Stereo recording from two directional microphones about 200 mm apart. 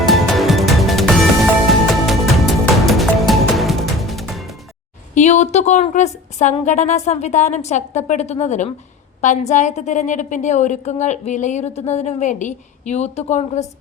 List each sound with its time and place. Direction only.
0.0 s music: centre (ahead or behind)
5.1 s a woman's voice: 35° left (ahead or behind)